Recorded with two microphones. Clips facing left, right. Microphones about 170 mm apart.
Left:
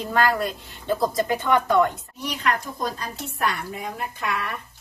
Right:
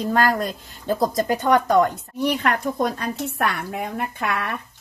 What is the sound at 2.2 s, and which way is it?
Speech, 60° right (ahead or behind).